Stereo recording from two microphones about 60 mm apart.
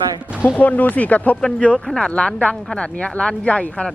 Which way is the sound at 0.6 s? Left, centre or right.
Left.